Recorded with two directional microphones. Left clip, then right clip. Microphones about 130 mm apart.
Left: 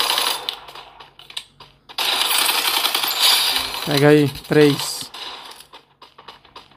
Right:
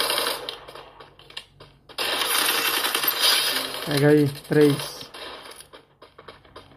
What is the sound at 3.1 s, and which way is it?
Mechanisms, 25° left (ahead or behind).